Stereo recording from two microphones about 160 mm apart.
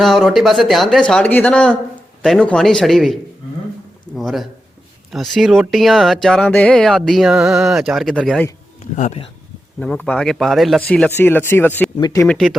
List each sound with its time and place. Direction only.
0.0 s speech: centre (ahead or behind)
8.8 s speech: 45° left (ahead or behind)
9.8 s speech: 5° left (ahead or behind)
11.9 s speech: 25° left (ahead or behind)
12.3 s speech: centre (ahead or behind)